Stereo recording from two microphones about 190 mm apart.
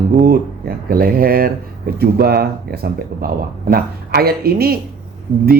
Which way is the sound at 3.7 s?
50° right (ahead or behind).